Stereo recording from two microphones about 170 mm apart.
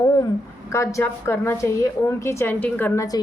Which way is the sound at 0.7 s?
15° left (ahead or behind).